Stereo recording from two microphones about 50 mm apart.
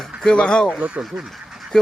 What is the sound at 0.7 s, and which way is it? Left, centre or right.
Speech, right.